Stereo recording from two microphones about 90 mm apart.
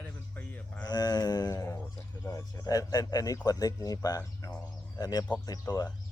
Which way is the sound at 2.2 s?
40° left (ahead or behind).